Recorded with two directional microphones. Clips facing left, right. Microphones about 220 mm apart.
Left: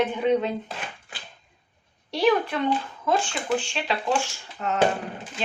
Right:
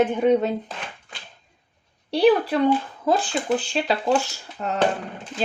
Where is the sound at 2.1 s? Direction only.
35° right (ahead or behind).